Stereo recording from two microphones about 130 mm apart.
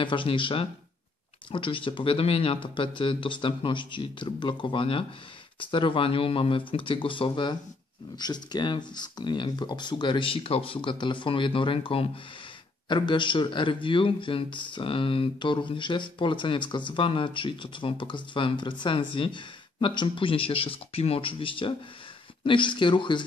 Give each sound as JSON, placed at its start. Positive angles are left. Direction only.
{"t": 0.0, "sound": "a man's voice", "side_deg": 40}